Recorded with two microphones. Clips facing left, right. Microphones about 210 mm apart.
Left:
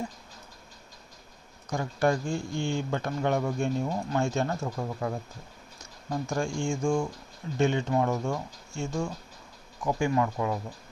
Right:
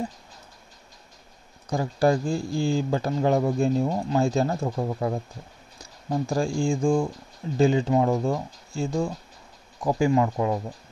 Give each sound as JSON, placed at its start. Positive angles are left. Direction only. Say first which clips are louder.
{"t": 1.7, "sound": "speech", "louder": "right 4 dB", "side_deg": -35}